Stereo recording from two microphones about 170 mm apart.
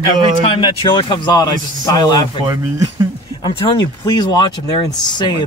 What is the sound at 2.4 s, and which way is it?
Speech, 20° right (ahead or behind).